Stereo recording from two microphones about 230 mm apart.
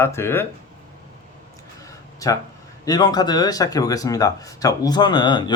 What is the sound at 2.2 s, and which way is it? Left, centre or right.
Speech, centre.